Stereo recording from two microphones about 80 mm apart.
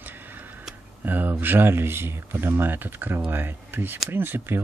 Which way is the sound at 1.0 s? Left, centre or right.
Right.